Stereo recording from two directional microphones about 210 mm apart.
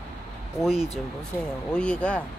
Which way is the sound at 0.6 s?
Centre (ahead or behind).